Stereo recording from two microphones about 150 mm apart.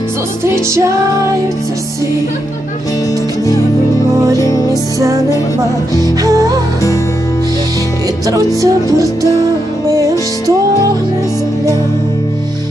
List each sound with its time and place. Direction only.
4.4 s music: 20° left (ahead or behind)
4.9 s music: 20° right (ahead or behind)
8.3 s music: 20° right (ahead or behind)